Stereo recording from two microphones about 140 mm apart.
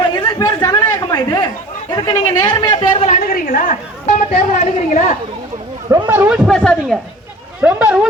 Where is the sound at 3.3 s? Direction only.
90° left; by 4.4 s 60° left (ahead or behind).